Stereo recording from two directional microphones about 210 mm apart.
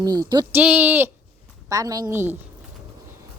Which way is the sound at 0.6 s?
5° right (ahead or behind).